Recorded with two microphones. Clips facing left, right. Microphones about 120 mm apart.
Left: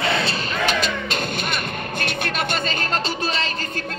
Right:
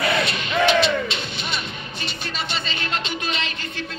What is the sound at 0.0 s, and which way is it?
Music, 30° left (ahead or behind).